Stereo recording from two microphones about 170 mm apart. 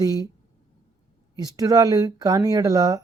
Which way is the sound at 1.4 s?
20° right (ahead or behind).